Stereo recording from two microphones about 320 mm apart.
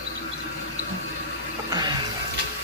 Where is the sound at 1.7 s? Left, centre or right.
Centre.